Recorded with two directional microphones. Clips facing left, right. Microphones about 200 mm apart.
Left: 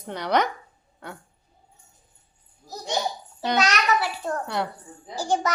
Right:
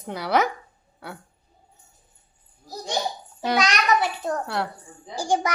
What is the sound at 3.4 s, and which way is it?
Speech, 10° right (ahead or behind).